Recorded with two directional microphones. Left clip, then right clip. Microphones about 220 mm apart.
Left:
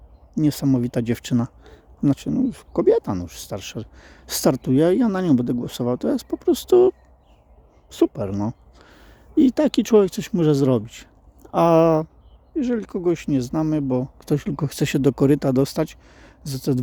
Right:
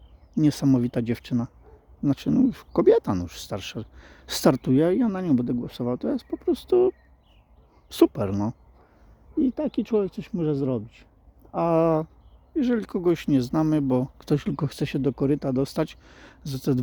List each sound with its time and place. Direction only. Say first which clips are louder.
0.3 s speech: left 1 dB; centre (ahead or behind); by 2.0 s 15° left (ahead or behind)
2.0 s speech: left 1 dB; 5° right (ahead or behind)
7.9 s speech: even; 5° right (ahead or behind)
9.4 s speech: left 8 dB; 20° left (ahead or behind)
11.5 s speech: left 6 dB; 10° left (ahead or behind)
14.8 s speech: left 7 dB; 15° left (ahead or behind); by 16.8 s centre (ahead or behind)